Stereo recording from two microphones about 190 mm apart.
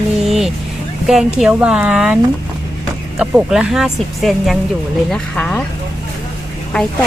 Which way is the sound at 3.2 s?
5° right (ahead or behind).